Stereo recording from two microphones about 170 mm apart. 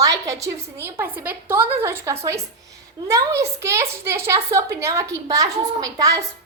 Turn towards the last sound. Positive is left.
turn(degrees=-20)  # may be behind; listen again after turning